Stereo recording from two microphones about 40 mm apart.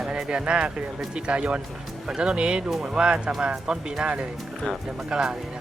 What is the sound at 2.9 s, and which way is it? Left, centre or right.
Speech, right.